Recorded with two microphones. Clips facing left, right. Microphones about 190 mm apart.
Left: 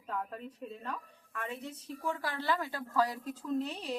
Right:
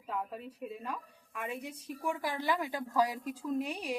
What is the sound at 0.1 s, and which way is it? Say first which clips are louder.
A woman's voice: right 1 dB; 5° right (ahead or behind).